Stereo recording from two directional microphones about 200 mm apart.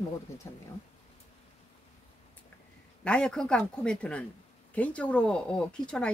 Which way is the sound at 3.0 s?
5° left (ahead or behind).